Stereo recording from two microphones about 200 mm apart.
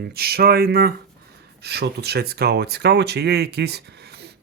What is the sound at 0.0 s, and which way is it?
Speech, 50° right (ahead or behind).